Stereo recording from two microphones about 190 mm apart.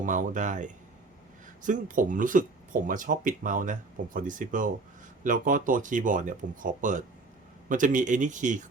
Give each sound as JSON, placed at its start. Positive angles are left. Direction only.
{"t": 0.0, "sound": "a man's voice", "side_deg": -45}